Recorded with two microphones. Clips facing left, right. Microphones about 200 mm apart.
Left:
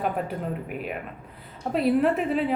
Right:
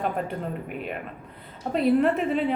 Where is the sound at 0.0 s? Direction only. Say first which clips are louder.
Even; 5° left (ahead or behind).